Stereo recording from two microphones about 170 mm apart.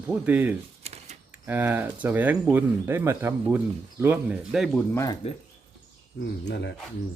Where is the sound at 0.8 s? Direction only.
40° right (ahead or behind).